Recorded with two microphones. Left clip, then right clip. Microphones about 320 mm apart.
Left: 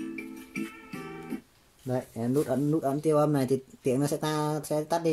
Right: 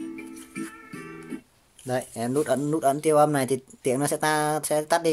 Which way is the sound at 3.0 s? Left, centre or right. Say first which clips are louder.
Right 4 dB; right.